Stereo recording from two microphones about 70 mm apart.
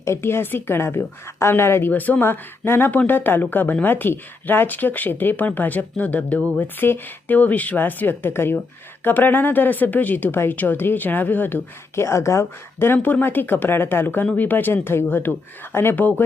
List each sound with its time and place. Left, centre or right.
0.0 s speech: left
1.9 s speech: left
12.0 s speech: left